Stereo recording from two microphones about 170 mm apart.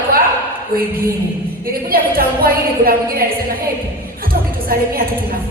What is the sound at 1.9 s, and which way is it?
A woman's voice, 60° right (ahead or behind).